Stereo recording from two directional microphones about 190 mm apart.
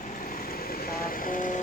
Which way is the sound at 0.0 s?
45° left (ahead or behind).